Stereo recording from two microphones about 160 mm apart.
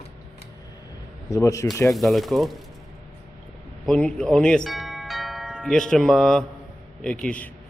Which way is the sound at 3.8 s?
5° left (ahead or behind).